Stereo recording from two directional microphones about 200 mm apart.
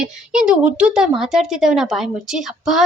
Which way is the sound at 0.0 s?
5° right (ahead or behind).